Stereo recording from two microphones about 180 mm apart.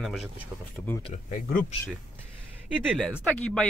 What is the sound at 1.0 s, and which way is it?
Speech, 45° left (ahead or behind).